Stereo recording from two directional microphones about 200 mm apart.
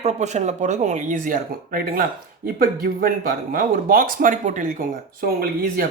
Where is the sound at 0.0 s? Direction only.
35° right (ahead or behind).